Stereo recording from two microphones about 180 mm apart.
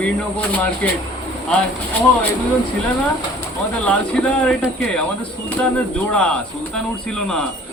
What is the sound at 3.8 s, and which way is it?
Speech, 5° left (ahead or behind).